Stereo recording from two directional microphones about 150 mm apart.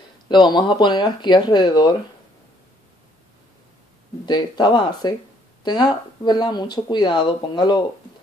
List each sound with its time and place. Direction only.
0.3 s speech: 30° left (ahead or behind)
4.3 s speech: 30° left (ahead or behind)